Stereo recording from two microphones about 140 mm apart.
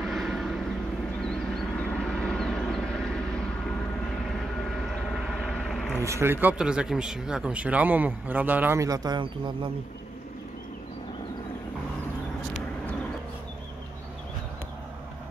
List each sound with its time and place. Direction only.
0.0 s vehicle: centre (ahead or behind)
1.8 s vehicle: 5° left (ahead or behind)
5.1 s vehicle: centre (ahead or behind)
6.0 s speech: 20° right (ahead or behind)
6.6 s speech: 5° right (ahead or behind); by 9.7 s 35° right (ahead or behind)